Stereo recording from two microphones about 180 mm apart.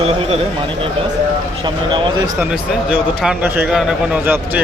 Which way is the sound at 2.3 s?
5° right (ahead or behind).